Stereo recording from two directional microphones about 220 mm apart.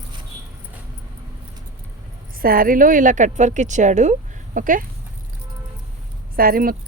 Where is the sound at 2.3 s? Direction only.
40° right (ahead or behind).